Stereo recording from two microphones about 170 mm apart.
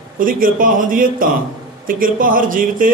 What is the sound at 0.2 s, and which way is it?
A man's voice, 55° right (ahead or behind).